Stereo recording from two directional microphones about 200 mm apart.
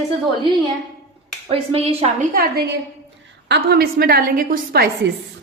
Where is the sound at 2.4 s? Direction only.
55° right (ahead or behind).